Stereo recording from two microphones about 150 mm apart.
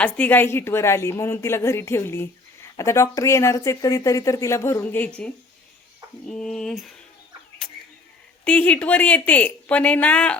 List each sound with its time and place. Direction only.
0.0 s a woman's voice: 10° left (ahead or behind)
8.4 s a woman's voice: 10° left (ahead or behind)